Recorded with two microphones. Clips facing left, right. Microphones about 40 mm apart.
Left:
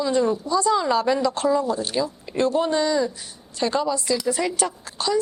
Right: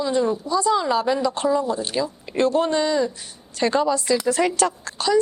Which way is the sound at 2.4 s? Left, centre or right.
Right.